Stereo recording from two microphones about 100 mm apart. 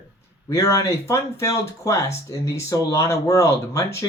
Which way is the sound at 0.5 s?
30° left (ahead or behind).